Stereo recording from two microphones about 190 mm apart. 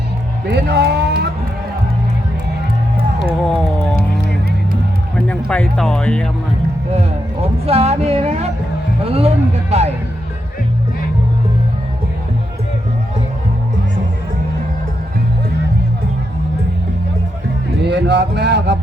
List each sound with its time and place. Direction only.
0.4 s speech: 60° right (ahead or behind)
3.4 s music: 5° left (ahead or behind)
5.3 s speech: 5° left (ahead or behind)
7.6 s a sound: 30° right (ahead or behind)
17.8 s speech: 65° right (ahead or behind)